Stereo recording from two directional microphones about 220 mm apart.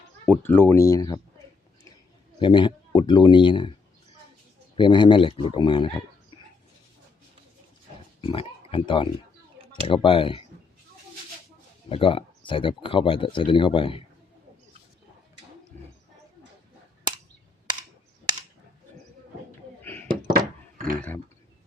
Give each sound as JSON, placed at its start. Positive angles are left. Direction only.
{"t": 0.3, "sound": "speech", "side_deg": 10}
{"t": 2.4, "sound": "speech", "side_deg": 20}
{"t": 4.8, "sound": "speech", "side_deg": 20}
{"t": 8.2, "sound": "speech", "side_deg": 25}
{"t": 11.9, "sound": "speech", "side_deg": 25}
{"t": 19.8, "sound": "door", "side_deg": 10}
{"t": 20.3, "sound": "a sound", "side_deg": -40}